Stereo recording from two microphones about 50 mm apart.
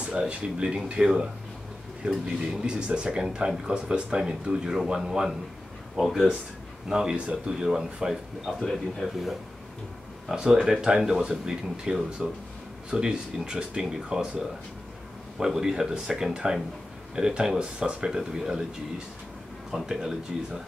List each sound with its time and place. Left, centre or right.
0.0 s speech: right
2.6 s speech: centre
5.9 s speech: centre
6.9 s speech: centre
8.7 s speech: centre
19.7 s speech: centre